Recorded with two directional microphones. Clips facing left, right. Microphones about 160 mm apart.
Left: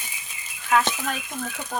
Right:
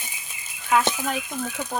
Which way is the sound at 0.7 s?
15° right (ahead or behind).